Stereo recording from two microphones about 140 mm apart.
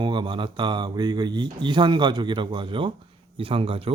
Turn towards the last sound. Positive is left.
turn(degrees=-40)  # may be behind; listen again after turning